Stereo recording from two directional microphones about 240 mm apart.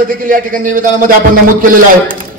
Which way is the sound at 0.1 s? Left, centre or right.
Right.